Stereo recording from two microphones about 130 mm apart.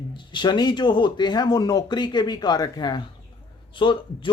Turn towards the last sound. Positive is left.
turn(degrees=40)  # may be behind; listen again after turning